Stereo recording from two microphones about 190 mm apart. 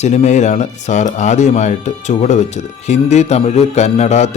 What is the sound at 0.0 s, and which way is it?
Speech, 40° left (ahead or behind).